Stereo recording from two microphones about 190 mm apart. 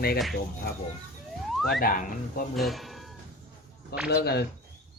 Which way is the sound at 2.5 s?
Centre (ahead or behind).